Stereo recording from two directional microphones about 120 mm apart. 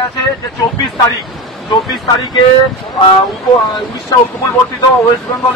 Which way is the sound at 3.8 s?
25° left (ahead or behind).